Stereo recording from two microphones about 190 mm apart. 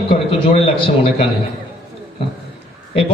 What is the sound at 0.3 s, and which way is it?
Speech, 30° left (ahead or behind).